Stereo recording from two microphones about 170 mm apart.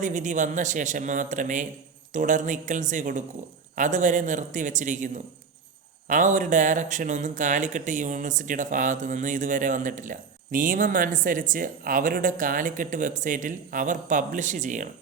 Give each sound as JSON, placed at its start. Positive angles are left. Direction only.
{"t": 0.0, "sound": "speech", "side_deg": -45}